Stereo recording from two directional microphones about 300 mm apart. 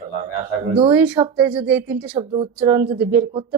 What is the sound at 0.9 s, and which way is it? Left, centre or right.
Speech, centre.